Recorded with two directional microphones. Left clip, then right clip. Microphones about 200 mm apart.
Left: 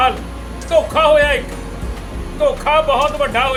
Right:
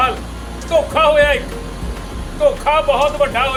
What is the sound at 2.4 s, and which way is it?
Speech, 5° right (ahead or behind).